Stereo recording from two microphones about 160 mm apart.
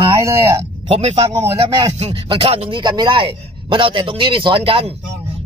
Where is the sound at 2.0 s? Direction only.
35° right (ahead or behind).